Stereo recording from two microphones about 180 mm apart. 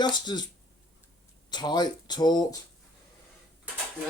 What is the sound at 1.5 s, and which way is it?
Speech, 25° left (ahead or behind).